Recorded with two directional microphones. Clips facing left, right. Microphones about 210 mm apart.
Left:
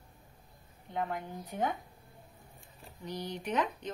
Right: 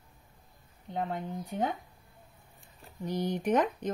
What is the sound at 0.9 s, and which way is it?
Speech, 30° right (ahead or behind).